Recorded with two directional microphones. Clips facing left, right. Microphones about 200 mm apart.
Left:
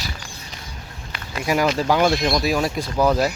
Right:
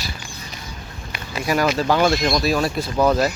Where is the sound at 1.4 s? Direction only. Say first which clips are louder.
Even; 15° left (ahead or behind).